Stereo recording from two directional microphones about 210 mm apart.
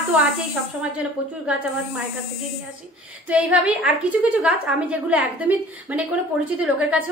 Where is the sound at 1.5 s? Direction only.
5° right (ahead or behind).